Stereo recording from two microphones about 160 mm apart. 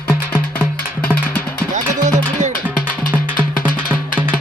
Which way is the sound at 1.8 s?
50° right (ahead or behind).